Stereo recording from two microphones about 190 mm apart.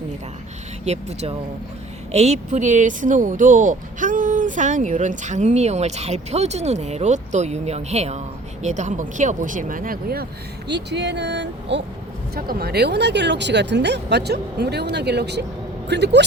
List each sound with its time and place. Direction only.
0.9 s speech: 35° right (ahead or behind); by 10.2 s 50° right (ahead or behind)
10.7 s speech: 65° right (ahead or behind)
12.3 s speech: 50° right (ahead or behind)